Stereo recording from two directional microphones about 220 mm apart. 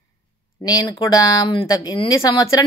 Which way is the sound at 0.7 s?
15° left (ahead or behind).